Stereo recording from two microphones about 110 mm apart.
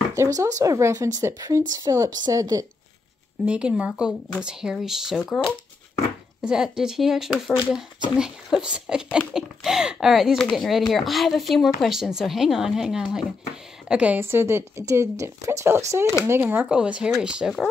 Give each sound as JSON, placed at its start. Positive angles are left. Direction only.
{"t": 0.1, "sound": "speech", "side_deg": -30}
{"t": 3.4, "sound": "speech", "side_deg": -10}
{"t": 14.2, "sound": "speech", "side_deg": -20}
{"t": 16.6, "sound": "speech", "side_deg": -10}